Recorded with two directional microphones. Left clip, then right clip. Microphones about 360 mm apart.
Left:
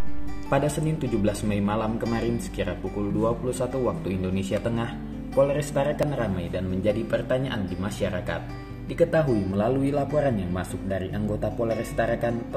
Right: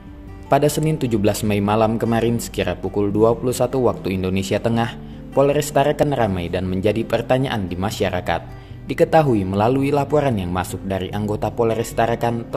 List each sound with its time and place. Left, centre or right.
0.5 s a man's voice: right